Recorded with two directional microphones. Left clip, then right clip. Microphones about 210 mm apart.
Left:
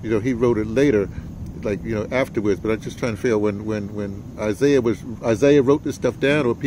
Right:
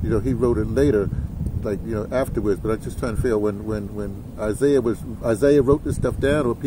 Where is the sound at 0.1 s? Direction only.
30° left (ahead or behind).